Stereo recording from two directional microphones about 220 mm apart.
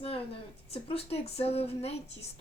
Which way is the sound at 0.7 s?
25° left (ahead or behind).